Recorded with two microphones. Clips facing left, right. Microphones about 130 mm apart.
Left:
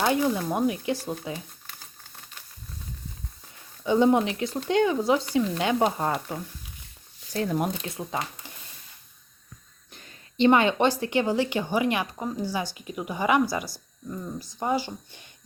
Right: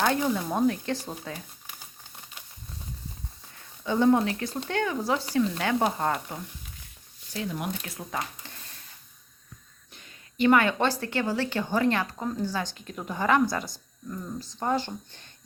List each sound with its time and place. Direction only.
0.0 s speech: 10° left (ahead or behind)
3.8 s speech: 15° left (ahead or behind)
7.3 s speech: 45° left (ahead or behind)
7.8 s speech: 25° left (ahead or behind)
10.3 s speech: 25° left (ahead or behind)